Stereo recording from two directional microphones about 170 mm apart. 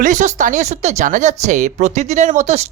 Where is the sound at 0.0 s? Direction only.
45° right (ahead or behind).